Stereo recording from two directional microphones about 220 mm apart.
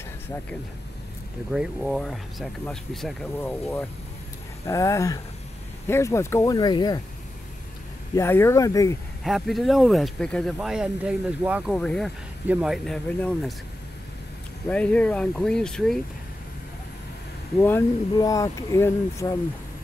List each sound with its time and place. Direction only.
1.5 s speech: centre (ahead or behind); by 7.0 s 20° left (ahead or behind)
8.1 s speech: 10° left (ahead or behind)
9.2 s speech: centre (ahead or behind)
14.7 s speech: 5° left (ahead or behind)
17.6 s speech: 15° left (ahead or behind)